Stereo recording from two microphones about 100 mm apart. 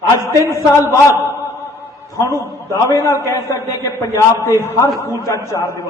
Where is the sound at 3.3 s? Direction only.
30° left (ahead or behind).